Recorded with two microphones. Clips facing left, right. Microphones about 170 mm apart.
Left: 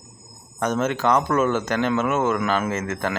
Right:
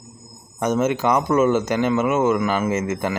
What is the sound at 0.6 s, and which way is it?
Speech, 10° right (ahead or behind).